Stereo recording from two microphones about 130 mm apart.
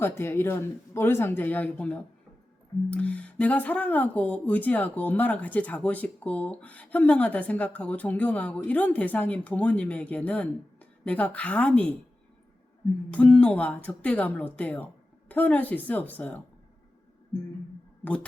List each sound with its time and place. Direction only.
0.0 s speech: 20° left (ahead or behind)
13.1 s speech: 10° left (ahead or behind)
18.0 s speech: 10° left (ahead or behind)